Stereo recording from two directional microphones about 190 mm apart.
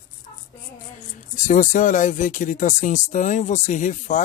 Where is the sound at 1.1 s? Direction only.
40° left (ahead or behind).